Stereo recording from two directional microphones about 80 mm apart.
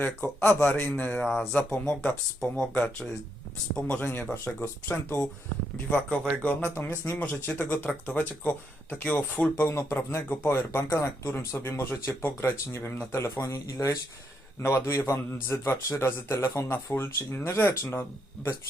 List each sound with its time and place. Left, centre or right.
0.0 s speech: centre
1.2 s speech: centre
3.8 s speech: centre
4.0 s speech: left
4.3 s speech: centre
9.7 s a man's voice: left